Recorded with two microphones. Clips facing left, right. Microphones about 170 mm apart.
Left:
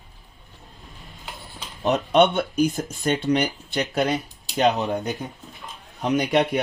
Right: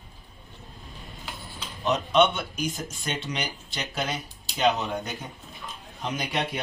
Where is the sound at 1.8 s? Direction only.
60° left (ahead or behind).